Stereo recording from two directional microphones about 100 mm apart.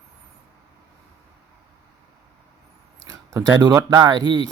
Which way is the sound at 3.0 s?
35° right (ahead or behind).